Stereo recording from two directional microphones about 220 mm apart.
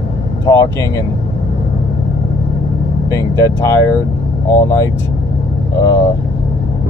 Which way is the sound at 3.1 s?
15° left (ahead or behind).